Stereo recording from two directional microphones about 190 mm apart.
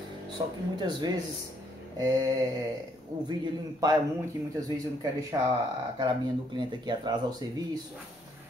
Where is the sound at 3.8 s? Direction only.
20° right (ahead or behind).